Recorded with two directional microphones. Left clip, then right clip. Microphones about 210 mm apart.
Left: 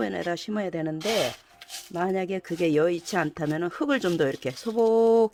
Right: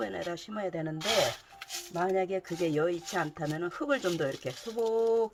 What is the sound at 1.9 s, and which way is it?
Speech, 55° left (ahead or behind).